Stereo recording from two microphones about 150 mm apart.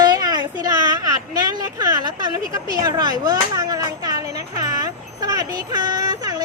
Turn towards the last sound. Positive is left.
turn(degrees=-25)  # may be behind; listen again after turning